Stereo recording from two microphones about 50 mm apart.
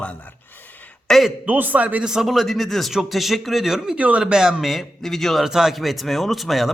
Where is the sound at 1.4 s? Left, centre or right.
Right.